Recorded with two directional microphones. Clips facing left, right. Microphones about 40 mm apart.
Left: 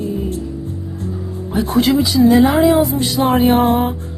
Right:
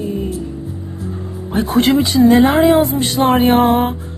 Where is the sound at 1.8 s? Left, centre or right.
Right.